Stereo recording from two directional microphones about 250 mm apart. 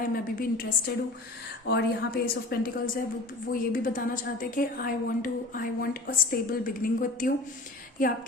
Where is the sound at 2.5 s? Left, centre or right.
Left.